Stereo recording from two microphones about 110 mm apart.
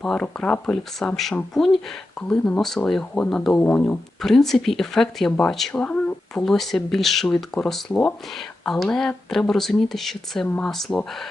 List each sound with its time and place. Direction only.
0.0 s speech: 5° left (ahead or behind)
3.5 s speech: 15° left (ahead or behind)
4.2 s speech: 5° left (ahead or behind)